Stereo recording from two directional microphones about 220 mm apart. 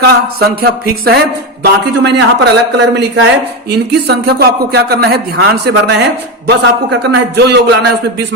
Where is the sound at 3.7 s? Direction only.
45° right (ahead or behind).